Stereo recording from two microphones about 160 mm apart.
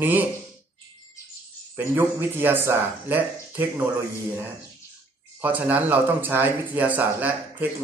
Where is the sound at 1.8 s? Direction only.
15° right (ahead or behind).